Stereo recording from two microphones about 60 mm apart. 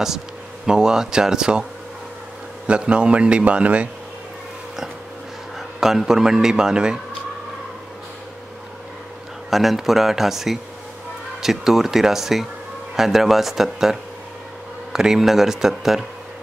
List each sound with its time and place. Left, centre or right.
0.7 s a man's voice: centre
5.8 s a man's voice: centre
9.5 s speech: centre